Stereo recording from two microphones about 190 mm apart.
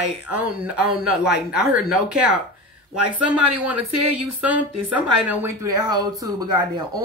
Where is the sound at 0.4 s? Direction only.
10° right (ahead or behind).